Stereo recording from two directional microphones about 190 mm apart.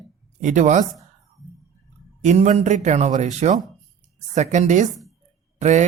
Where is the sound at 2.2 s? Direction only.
40° right (ahead or behind).